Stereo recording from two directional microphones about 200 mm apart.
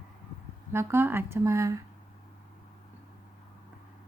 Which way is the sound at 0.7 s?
10° right (ahead or behind).